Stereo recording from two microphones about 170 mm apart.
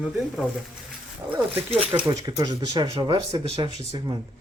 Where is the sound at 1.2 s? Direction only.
5° right (ahead or behind).